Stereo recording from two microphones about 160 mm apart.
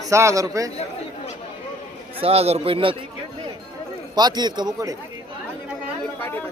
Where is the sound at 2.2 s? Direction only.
40° right (ahead or behind).